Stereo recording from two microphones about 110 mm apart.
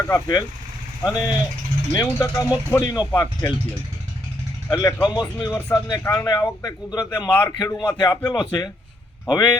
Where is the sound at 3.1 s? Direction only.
20° left (ahead or behind).